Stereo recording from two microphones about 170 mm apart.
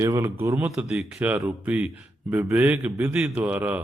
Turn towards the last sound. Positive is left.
turn(degrees=-10)  # may be behind; listen again after turning